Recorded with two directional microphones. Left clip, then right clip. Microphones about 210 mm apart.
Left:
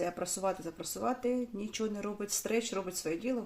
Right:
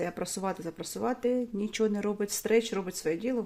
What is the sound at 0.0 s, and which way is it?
Speech, 40° right (ahead or behind).